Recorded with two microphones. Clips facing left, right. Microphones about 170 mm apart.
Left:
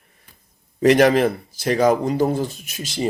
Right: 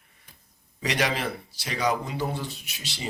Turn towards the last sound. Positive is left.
turn(degrees=45)  # may be behind; listen again after turning